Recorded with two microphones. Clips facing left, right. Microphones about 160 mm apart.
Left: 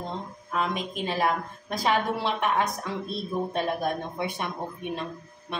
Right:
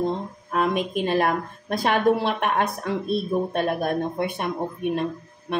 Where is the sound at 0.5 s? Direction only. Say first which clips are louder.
Right 6 dB; 55° right (ahead or behind).